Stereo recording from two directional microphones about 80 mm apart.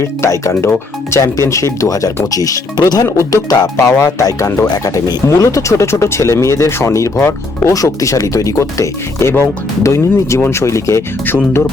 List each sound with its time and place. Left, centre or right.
0.2 s speech: left
7.2 s speech: left
7.7 s speech: left